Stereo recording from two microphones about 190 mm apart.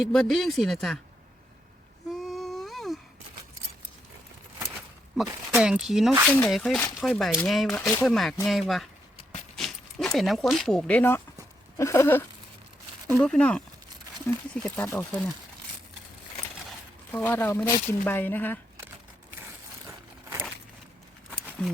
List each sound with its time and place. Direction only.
0.0 s speech: centre (ahead or behind)
2.1 s whimper: centre (ahead or behind)
5.1 s speech: centre (ahead or behind)
7.7 s speech: 10° left (ahead or behind)
8.0 s speech: centre (ahead or behind)
17.1 s speech: 10° left (ahead or behind)
21.2 s a sound: 10° right (ahead or behind)